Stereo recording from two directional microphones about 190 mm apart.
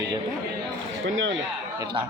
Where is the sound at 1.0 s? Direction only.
80° right.